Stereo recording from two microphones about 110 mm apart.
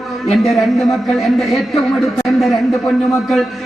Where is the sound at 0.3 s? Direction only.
Centre (ahead or behind).